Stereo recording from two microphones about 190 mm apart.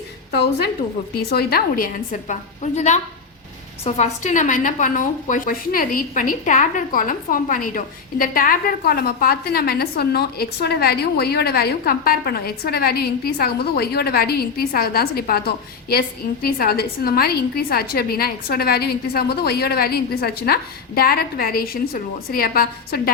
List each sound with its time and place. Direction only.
1.3 s a woman's voice: 55° left (ahead or behind)